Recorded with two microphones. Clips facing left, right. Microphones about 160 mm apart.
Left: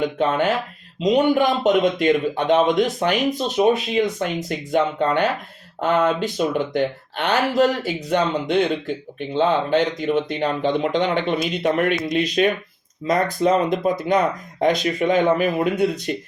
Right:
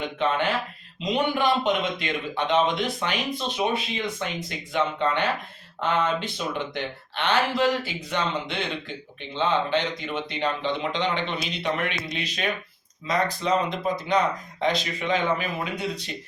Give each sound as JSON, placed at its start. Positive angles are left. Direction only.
{"t": 0.2, "sound": "a man's voice", "side_deg": 45}